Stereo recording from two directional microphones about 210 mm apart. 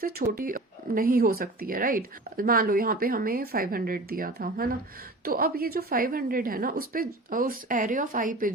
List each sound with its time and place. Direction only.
0.0 s a woman's voice: 40° right (ahead or behind)